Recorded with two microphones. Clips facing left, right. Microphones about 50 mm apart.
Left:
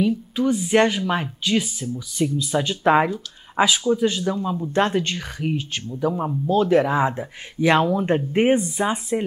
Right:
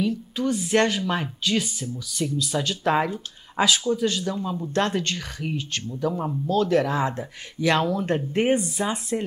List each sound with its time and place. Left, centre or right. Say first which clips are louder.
0.0 s speech: left 4 dB; centre